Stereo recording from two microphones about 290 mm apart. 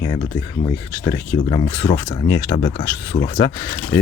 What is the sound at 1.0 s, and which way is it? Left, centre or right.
Speech, centre.